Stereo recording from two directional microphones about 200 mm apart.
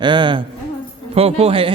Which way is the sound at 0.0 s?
25° right (ahead or behind).